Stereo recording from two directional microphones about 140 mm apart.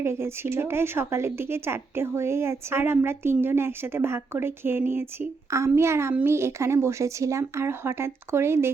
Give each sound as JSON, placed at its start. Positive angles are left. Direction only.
{"t": 0.0, "sound": "speech", "side_deg": -20}